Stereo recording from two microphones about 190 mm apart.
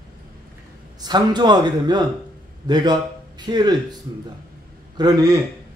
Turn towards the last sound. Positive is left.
turn(degrees=-20)  # may be behind; listen again after turning